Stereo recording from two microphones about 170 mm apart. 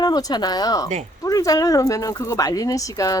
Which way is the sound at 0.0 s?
25° left (ahead or behind).